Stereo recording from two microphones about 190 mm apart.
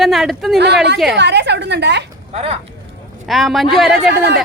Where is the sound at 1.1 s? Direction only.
65° right (ahead or behind).